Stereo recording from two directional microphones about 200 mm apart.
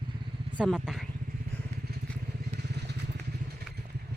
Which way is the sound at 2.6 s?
55° right (ahead or behind).